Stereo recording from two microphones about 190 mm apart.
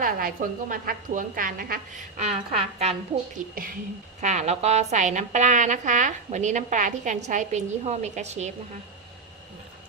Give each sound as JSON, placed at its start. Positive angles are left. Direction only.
{"t": 0.0, "sound": "a woman's voice", "side_deg": -50}
{"t": 2.1, "sound": "a woman's voice", "side_deg": -35}